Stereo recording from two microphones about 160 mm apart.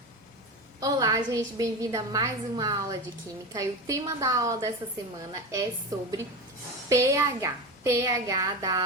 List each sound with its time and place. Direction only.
0.8 s a woman's voice: 25° right (ahead or behind)
6.8 s a woman's voice: 20° right (ahead or behind)